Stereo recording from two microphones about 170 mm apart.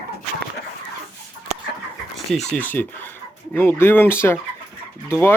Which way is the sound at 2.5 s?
10° left (ahead or behind).